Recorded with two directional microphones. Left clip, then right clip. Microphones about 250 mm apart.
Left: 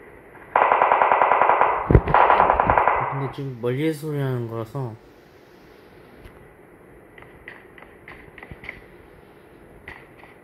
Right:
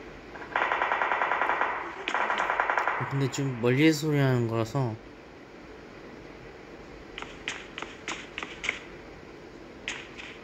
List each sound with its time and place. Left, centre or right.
0.5 s machine gun: centre
3.6 s speech: centre
8.1 s tap: centre